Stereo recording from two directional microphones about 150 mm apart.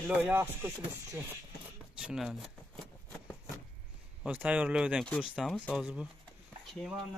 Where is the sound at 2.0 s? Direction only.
5° right (ahead or behind).